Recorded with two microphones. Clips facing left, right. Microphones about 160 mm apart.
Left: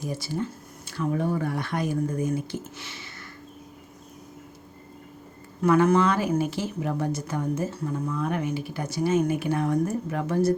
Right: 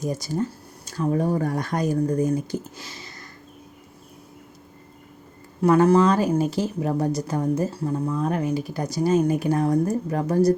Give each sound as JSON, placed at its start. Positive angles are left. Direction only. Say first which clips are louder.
{"t": 0.0, "sound": "speech", "louder": "right 4 dB", "side_deg": -45}
{"t": 5.6, "sound": "speech", "louder": "right 3 dB", "side_deg": -35}